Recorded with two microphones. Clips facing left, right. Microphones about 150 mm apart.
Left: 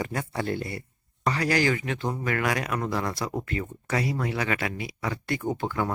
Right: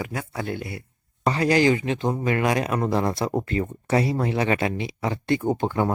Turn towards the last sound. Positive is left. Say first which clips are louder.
# right 5 dB
turn(degrees=-25)  # may be behind; listen again after turning